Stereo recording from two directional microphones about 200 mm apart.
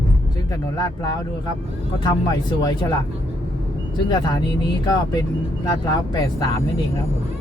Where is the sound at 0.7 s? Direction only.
20° left (ahead or behind).